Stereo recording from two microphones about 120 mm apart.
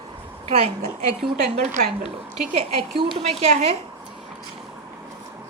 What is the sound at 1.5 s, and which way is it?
Speech, 80° right.